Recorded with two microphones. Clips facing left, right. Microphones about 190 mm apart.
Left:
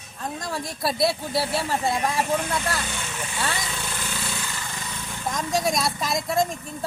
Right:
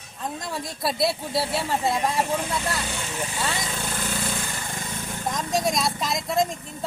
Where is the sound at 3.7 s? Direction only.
40° right (ahead or behind).